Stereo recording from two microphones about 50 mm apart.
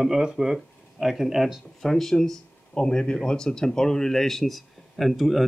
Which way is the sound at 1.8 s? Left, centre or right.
Centre.